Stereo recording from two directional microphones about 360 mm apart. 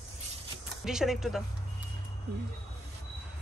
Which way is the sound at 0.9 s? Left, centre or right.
Centre.